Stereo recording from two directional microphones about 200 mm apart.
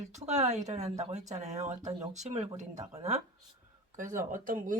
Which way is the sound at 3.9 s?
40° right (ahead or behind).